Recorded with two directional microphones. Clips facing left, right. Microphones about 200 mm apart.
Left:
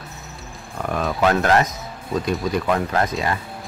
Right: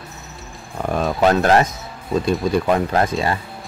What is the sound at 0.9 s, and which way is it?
Speech, 30° right (ahead or behind).